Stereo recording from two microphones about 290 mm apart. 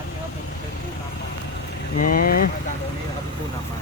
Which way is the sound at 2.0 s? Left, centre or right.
Left.